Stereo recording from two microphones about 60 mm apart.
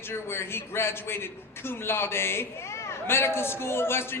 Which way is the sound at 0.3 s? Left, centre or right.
Left.